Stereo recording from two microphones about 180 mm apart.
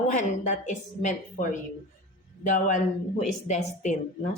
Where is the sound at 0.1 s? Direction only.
45° left (ahead or behind).